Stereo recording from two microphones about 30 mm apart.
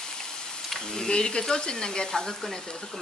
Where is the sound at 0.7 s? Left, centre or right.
Left.